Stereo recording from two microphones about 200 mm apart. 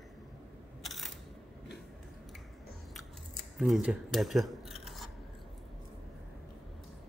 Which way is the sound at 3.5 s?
Centre (ahead or behind).